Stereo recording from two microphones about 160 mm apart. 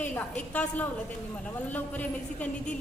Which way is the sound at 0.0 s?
10° left (ahead or behind).